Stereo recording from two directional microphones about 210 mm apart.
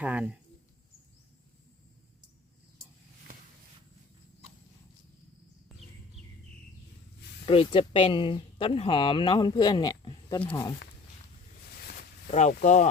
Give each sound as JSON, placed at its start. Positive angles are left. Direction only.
{"t": 0.0, "sound": "speech", "side_deg": -5}
{"t": 7.4, "sound": "speech", "side_deg": 25}
{"t": 12.3, "sound": "speech", "side_deg": 35}